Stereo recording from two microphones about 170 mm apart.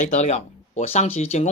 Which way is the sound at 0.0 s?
45° left (ahead or behind).